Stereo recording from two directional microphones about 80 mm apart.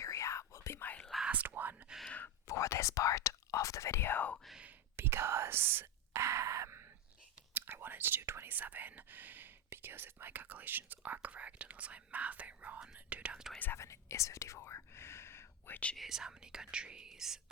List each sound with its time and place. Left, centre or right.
0.0 s whispering: left
1.2 s whispering: centre
2.0 s a sound: centre
2.5 s whispering: left
4.9 s whispering: right
13.7 s whispering: left
16.0 s speech: centre